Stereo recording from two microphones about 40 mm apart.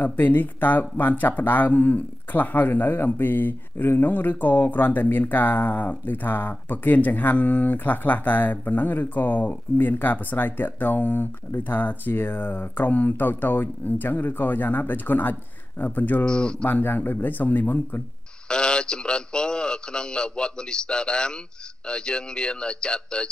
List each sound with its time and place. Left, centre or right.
0.0 s speech: left
16.3 s a man's voice: left
16.6 s speech: left
18.5 s a man's voice: left